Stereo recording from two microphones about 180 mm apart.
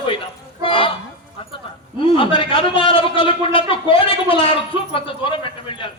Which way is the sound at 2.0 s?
30° left (ahead or behind).